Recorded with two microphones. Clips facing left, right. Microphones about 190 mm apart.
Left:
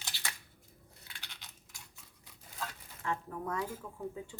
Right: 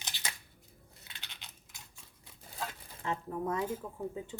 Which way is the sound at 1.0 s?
20° right (ahead or behind).